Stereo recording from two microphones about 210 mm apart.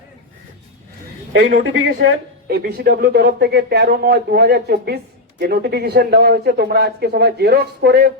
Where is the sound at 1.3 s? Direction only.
65° right (ahead or behind).